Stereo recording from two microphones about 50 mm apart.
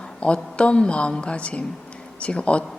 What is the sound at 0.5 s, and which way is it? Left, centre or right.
A woman's voice, left.